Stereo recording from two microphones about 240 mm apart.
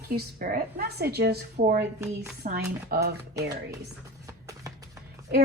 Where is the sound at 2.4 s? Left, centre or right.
Right.